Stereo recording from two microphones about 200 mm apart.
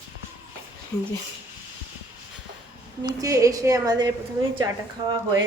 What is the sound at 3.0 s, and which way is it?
A woman's voice, 20° right (ahead or behind).